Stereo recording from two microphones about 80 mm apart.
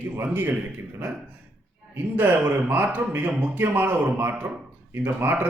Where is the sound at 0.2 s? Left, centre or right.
Right.